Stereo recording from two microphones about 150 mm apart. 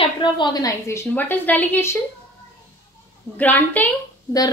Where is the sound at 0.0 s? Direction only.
30° left (ahead or behind); by 2.0 s 15° left (ahead or behind).